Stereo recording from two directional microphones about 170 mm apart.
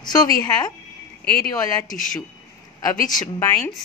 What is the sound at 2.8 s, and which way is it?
Speech, 20° left (ahead or behind).